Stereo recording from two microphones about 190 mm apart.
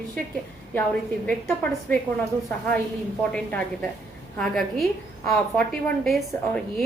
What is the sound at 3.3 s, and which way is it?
A woman's voice, 5° left (ahead or behind).